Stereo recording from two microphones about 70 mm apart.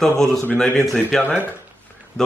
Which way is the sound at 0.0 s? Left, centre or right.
Centre.